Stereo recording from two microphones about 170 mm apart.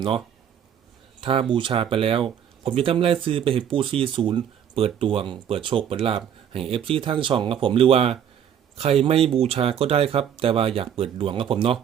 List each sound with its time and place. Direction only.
1.2 s speech: 30° right (ahead or behind)